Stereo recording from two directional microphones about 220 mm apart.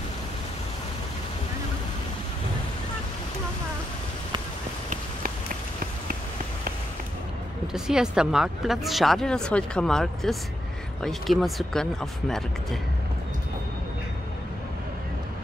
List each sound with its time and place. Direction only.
7.6 s speech: 5° right (ahead or behind)